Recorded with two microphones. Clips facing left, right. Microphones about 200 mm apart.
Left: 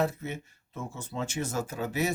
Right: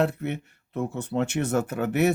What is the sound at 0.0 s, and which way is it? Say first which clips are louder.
Speech: right 5 dB; 65° right (ahead or behind).